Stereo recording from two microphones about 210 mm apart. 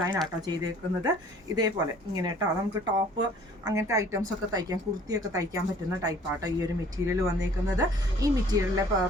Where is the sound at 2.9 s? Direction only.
20° right (ahead or behind).